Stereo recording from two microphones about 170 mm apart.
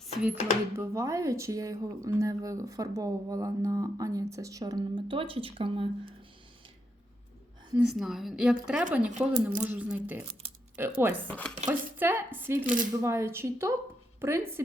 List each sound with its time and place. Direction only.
0.8 s speech: 20° right (ahead or behind)
7.8 s a woman's voice: 5° right (ahead or behind)
11.3 s chopping: 10° left (ahead or behind)
11.6 s speech: 10° right (ahead or behind)